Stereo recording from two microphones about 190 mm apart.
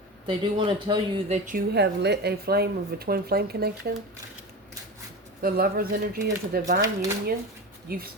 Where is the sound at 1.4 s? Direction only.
55° right (ahead or behind).